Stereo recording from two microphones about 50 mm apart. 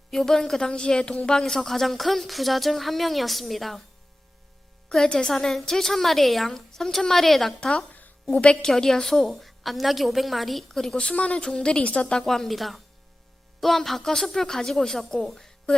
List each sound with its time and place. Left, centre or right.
0.1 s a woman's voice: centre
5.0 s a woman's voice: centre
5.3 s a woman's voice: centre
7.9 s a sound: left
8.4 s speech: centre
10.9 s speech: left
12.2 s a woman's voice: centre